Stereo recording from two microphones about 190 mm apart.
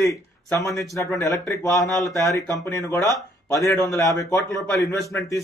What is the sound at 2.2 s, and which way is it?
Speech, 15° left (ahead or behind).